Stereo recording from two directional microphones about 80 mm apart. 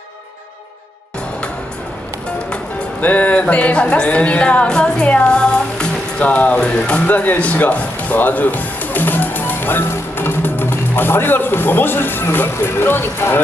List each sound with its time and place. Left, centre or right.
2.5 s speech: centre